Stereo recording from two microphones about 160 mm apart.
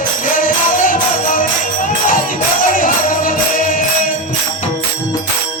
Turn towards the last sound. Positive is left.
turn(degrees=60)  # may be behind; listen again after turning